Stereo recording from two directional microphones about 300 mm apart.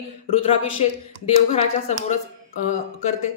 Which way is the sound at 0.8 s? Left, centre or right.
Left.